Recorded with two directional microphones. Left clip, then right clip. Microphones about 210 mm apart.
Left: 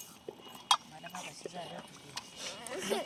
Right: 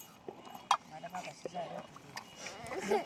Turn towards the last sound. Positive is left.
turn(degrees=45)  # may be behind; listen again after turning